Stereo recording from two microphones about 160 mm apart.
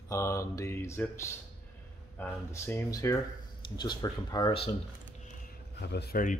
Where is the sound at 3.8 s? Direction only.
25° left (ahead or behind).